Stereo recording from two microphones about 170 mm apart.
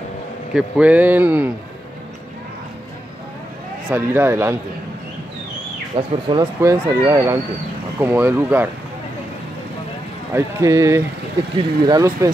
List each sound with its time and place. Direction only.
0.6 s speech: 10° right (ahead or behind)
3.9 s speech: 10° right (ahead or behind)
5.9 s speech: 25° right (ahead or behind); by 8.6 s 10° right (ahead or behind)
10.3 s speech: 15° right (ahead or behind)